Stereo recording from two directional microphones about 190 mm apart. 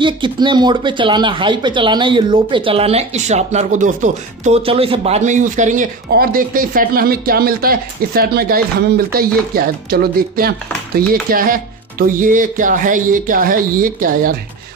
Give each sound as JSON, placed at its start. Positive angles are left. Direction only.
{"t": 0.0, "sound": "speech", "side_deg": -25}